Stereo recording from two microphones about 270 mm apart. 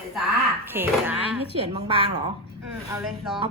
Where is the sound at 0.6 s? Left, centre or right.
Centre.